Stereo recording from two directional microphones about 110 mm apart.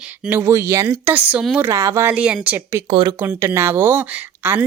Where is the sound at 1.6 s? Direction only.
25° right (ahead or behind).